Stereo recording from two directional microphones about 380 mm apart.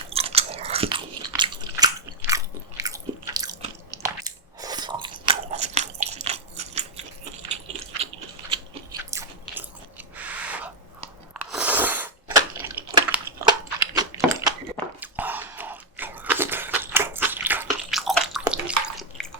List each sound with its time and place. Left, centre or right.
0.1 s biting: centre
4.6 s chewing: centre
5.3 s biting: centre
8.4 s biting: centre
10.2 s a sound: centre
15.0 s chewing: centre